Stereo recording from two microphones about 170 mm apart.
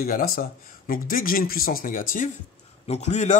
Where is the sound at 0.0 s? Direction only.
55° left (ahead or behind).